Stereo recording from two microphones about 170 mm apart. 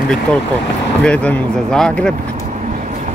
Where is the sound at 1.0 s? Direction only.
5° left (ahead or behind).